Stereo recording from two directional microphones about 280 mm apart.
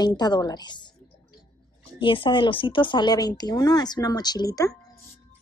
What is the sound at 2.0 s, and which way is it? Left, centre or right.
Speech, centre.